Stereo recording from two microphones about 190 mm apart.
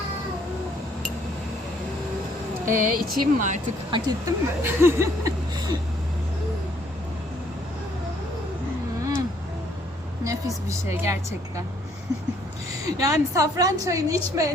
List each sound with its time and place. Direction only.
2.6 s speech: 45° right (ahead or behind)
3.9 s speech: 15° right (ahead or behind)
10.2 s speech: 15° right (ahead or behind)
12.8 s speech: 15° right (ahead or behind)